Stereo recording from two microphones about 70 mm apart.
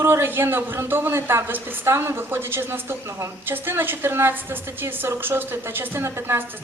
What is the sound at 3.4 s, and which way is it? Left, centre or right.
A woman's voice, right.